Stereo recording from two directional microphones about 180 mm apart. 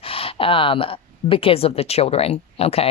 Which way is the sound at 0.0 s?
30° left (ahead or behind).